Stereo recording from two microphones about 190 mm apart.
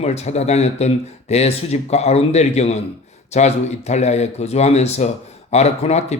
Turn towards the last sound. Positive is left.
turn(degrees=35)  # may be behind; listen again after turning